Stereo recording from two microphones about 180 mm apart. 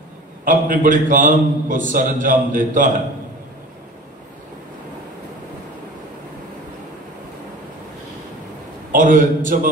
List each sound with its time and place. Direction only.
0.5 s a man's voice: 45° right (ahead or behind)
8.9 s a man's voice: 45° right (ahead or behind)